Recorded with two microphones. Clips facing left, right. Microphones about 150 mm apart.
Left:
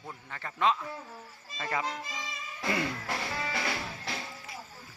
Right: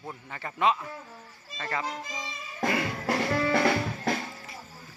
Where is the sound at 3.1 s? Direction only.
65° right (ahead or behind).